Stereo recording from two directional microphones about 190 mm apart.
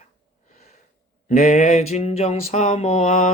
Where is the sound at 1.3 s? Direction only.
35° left (ahead or behind).